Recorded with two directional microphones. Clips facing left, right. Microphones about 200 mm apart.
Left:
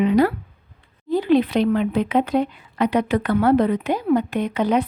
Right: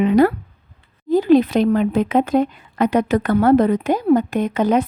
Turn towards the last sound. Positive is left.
turn(degrees=-45)  # may be behind; listen again after turning